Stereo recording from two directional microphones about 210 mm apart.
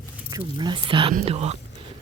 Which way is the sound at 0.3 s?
20° right (ahead or behind).